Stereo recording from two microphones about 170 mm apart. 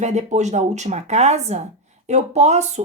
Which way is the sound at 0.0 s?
40° right (ahead or behind).